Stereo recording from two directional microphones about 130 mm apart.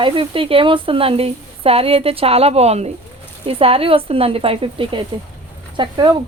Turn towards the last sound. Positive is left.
turn(degrees=-40)  # may be behind; listen again after turning